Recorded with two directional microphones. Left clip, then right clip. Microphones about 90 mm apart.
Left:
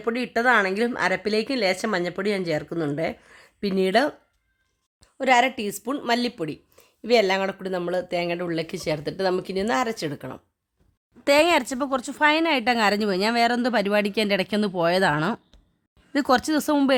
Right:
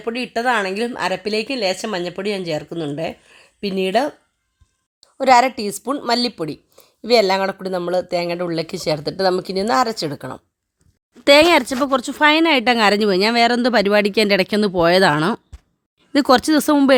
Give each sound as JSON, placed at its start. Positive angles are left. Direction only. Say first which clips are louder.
{"t": 0.0, "sound": "a woman's voice", "louder": "right 2 dB", "side_deg": -10}
{"t": 5.1, "sound": "speech", "louder": "right 6 dB", "side_deg": -45}
{"t": 11.2, "sound": "speech", "louder": "right 7 dB", "side_deg": -20}